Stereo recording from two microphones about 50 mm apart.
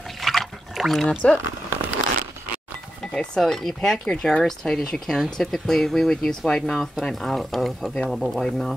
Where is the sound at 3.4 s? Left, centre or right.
Centre.